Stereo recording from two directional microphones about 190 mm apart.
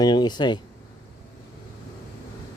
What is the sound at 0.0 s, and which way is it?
Speech, 20° left (ahead or behind).